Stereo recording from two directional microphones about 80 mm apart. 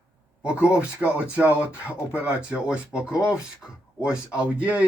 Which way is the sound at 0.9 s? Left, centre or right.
Centre.